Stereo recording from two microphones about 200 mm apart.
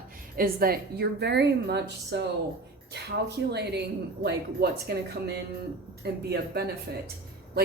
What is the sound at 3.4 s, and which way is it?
A woman's voice, 60° right (ahead or behind).